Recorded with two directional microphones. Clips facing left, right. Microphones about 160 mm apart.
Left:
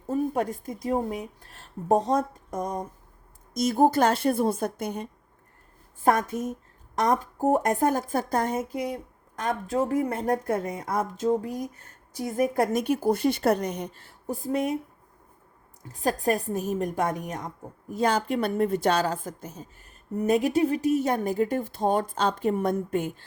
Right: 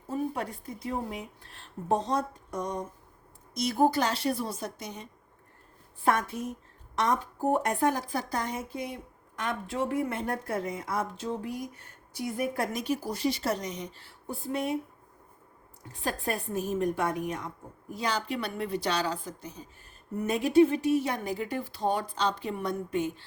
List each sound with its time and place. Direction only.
0.1 s speech: 45° left (ahead or behind)
3.5 s speech: 45° left (ahead or behind)
6.0 s speech: 45° left (ahead or behind)
15.9 s speech: 40° left (ahead or behind)